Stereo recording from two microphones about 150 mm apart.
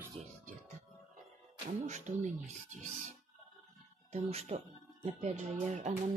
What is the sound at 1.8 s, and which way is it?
Speech, 55° right (ahead or behind).